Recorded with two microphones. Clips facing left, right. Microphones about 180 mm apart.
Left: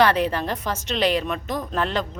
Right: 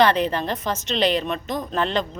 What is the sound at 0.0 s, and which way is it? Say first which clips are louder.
A woman's voice: right 1 dB; 5° left (ahead or behind).